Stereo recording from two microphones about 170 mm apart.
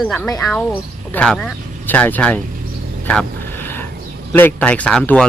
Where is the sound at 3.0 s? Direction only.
10° left (ahead or behind).